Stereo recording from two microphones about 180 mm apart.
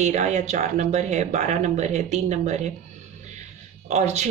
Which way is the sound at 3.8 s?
40° right (ahead or behind).